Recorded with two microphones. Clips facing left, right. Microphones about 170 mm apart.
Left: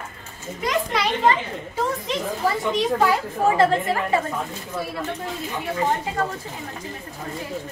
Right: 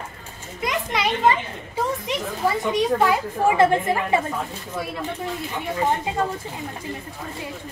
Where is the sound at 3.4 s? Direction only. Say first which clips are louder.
Right 1 dB; 20° right (ahead or behind).